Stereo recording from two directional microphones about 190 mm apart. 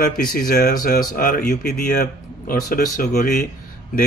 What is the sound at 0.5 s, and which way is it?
Speech, 45° left (ahead or behind).